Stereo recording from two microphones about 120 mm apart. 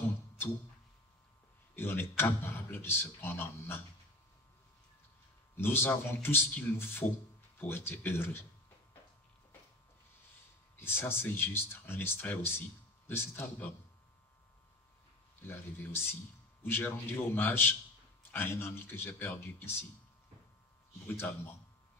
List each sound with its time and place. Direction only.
1.8 s speech: 20° left (ahead or behind)
5.6 s speech: 20° left (ahead or behind)
10.8 s speech: 20° left (ahead or behind)
15.4 s speech: 20° left (ahead or behind)